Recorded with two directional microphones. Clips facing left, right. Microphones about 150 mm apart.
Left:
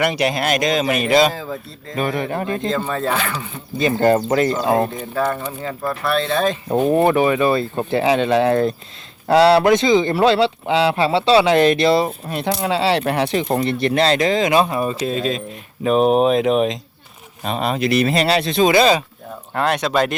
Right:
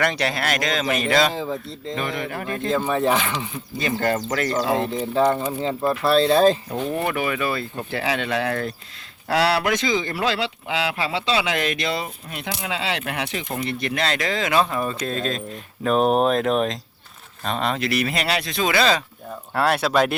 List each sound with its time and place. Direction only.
0.0 s speech: 15° left (ahead or behind)
1.3 s speech: 20° right (ahead or behind)
2.1 s speech: 25° left (ahead or behind)
2.6 s speech: 10° right (ahead or behind)
3.8 s speech: 25° left (ahead or behind)
5.2 s speech: 20° right (ahead or behind)
6.9 s speech: 30° left (ahead or behind)
19.5 s speech: 5° right (ahead or behind)